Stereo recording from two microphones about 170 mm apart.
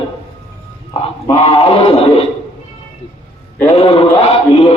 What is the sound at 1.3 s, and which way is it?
Chant, 35° left (ahead or behind).